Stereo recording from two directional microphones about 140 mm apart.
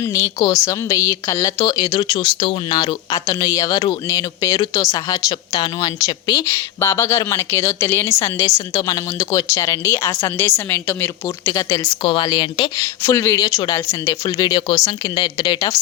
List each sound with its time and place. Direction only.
0.0 s speech: 25° left (ahead or behind)
6.7 s speech: 20° left (ahead or behind)
11.4 s a woman's voice: 25° left (ahead or behind)
12.8 s a woman's voice: 20° left (ahead or behind)